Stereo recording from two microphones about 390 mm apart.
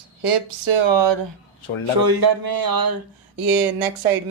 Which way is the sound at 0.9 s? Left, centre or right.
Right.